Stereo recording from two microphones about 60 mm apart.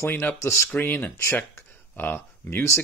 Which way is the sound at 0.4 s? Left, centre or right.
Left.